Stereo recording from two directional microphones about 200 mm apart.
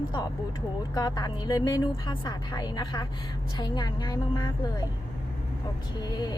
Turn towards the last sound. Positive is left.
turn(degrees=20)  # may be behind; listen again after turning